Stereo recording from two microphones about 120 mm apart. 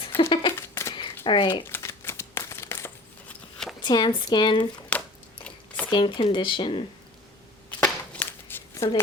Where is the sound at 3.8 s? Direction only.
40° left (ahead or behind).